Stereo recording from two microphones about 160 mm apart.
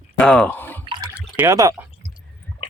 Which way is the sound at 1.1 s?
10° right (ahead or behind).